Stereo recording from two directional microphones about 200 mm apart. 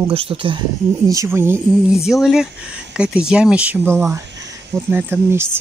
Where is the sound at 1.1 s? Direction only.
15° right (ahead or behind).